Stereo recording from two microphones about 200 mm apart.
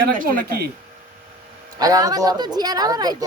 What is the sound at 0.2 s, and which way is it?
Speech, 50° right (ahead or behind).